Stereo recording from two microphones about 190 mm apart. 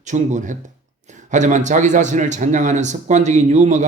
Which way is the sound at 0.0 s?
40° right (ahead or behind).